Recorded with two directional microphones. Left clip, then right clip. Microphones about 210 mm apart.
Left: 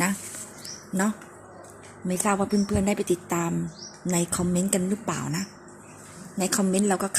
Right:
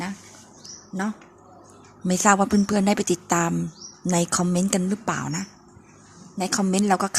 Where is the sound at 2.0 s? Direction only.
25° right (ahead or behind).